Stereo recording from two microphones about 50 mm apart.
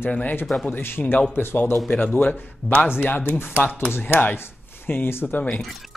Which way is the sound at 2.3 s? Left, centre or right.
Left.